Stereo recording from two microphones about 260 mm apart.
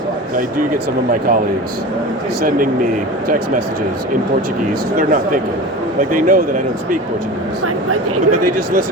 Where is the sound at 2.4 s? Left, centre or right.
Right.